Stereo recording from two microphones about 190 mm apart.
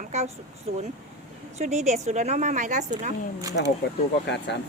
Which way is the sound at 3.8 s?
60° left (ahead or behind).